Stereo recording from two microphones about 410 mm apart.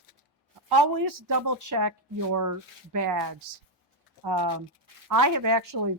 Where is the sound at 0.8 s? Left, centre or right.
Right.